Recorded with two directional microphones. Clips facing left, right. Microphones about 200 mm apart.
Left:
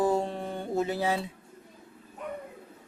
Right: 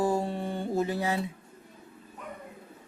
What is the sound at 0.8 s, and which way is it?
Music, 25° left (ahead or behind).